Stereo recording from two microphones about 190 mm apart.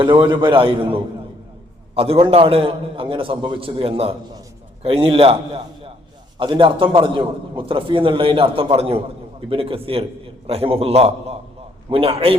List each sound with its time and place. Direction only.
0.0 s a man's voice: 25° right (ahead or behind)
6.4 s a man's voice: 25° right (ahead or behind)